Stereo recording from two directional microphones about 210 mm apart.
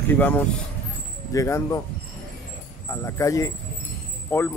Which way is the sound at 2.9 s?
10° left (ahead or behind).